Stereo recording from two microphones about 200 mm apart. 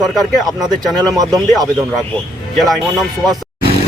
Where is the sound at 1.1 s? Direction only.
20° right (ahead or behind).